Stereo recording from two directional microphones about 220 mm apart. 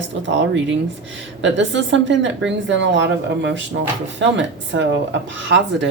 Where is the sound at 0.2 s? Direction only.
55° right (ahead or behind).